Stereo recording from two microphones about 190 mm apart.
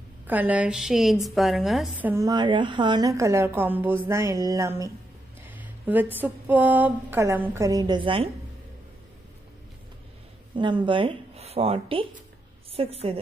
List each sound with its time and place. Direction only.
0.3 s a woman's voice: 10° right (ahead or behind); by 8.3 s 25° right (ahead or behind)
10.5 s a woman's voice: 25° right (ahead or behind)